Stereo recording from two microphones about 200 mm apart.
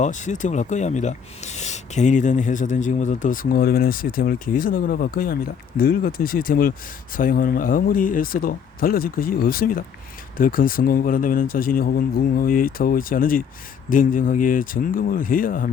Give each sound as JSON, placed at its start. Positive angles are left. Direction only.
{"t": 0.0, "sound": "speech", "side_deg": 35}